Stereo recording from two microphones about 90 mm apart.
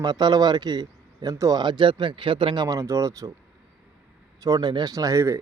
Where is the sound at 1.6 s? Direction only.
60° right (ahead or behind).